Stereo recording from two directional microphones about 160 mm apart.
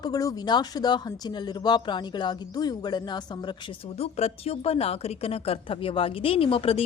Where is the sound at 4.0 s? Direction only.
40° left (ahead or behind).